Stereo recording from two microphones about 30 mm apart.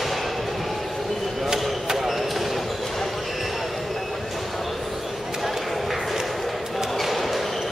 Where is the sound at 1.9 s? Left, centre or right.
Centre.